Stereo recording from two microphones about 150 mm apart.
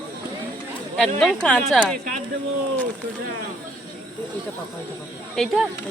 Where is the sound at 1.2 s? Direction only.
5° left (ahead or behind).